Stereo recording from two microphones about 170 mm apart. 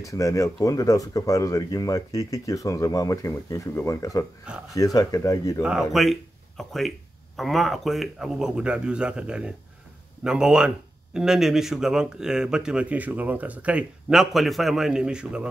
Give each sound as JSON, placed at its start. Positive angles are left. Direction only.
{"t": 0.0, "sound": "speech", "side_deg": 20}
{"t": 5.6, "sound": "speech", "side_deg": -5}